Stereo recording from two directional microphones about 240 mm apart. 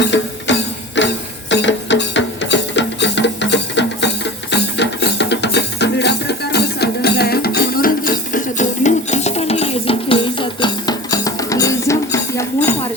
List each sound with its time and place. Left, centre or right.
0.0 s music: left; by 12.7 s centre